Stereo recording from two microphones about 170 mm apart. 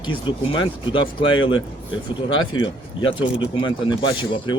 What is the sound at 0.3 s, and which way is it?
Speech, 30° left (ahead or behind).